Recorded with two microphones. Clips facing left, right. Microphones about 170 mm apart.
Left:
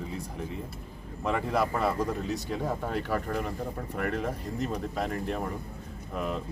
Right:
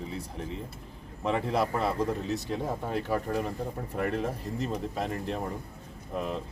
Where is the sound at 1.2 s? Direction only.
25° right (ahead or behind).